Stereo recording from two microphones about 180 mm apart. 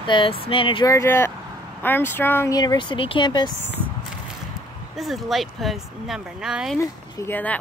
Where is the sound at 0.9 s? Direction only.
15° left (ahead or behind).